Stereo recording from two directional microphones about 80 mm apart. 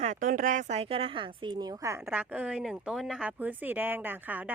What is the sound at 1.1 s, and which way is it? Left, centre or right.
Speech, right.